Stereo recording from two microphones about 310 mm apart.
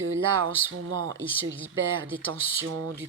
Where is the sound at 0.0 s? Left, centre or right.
Right.